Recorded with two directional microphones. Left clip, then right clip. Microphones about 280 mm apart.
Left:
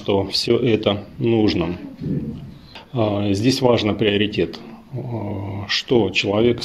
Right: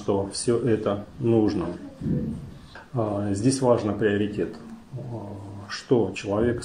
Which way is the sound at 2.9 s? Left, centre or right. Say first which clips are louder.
Left 7 dB; left.